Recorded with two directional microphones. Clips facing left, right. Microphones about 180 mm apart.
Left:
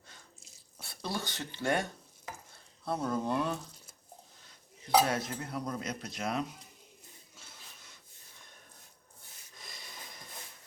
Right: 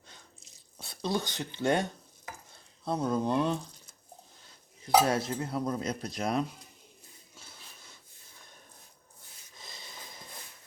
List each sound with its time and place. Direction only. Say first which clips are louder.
0.8 s speech: right 6 dB; 20° right (ahead or behind)
5.0 s cutlery: right 4 dB; 30° right (ahead or behind)
9.6 s a sound: right 2 dB; 25° right (ahead or behind)